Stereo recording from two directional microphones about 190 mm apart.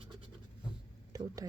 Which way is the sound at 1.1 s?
20° right (ahead or behind).